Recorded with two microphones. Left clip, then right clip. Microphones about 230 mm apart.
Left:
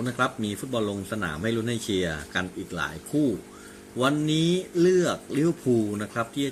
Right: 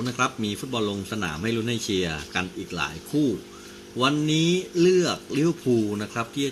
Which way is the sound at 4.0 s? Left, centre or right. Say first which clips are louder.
Right 1 dB; centre.